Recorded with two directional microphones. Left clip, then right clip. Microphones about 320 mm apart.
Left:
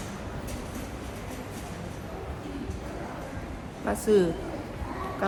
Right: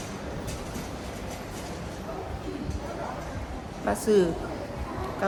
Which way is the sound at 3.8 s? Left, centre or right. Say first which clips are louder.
Even; centre.